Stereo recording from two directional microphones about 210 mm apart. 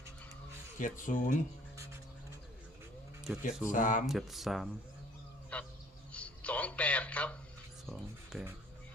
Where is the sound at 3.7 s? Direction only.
40° left (ahead or behind).